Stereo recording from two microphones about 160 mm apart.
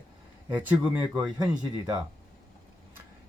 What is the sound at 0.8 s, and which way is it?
Speech, 30° right (ahead or behind).